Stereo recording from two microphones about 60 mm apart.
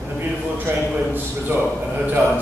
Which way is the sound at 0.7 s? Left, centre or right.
Right.